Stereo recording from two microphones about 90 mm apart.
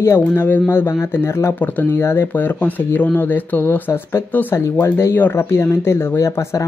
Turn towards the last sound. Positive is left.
turn(degrees=30)  # may be behind; listen again after turning